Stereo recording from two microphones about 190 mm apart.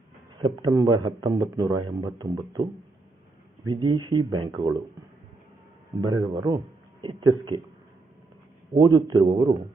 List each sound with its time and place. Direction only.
0.4 s speech: 20° right (ahead or behind)
3.7 s speech: 25° right (ahead or behind)
6.0 s speech: 20° right (ahead or behind)
8.7 s speech: 20° right (ahead or behind)